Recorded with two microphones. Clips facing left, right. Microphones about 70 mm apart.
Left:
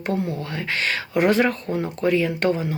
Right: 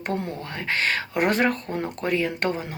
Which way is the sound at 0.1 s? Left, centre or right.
Right.